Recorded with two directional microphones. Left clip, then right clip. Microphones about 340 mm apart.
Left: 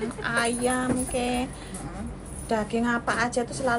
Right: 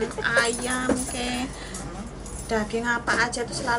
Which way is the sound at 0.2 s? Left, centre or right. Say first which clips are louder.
Right 2 dB; centre.